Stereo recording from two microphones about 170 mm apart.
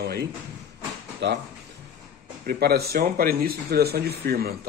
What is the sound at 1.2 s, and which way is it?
Speech, 90° right.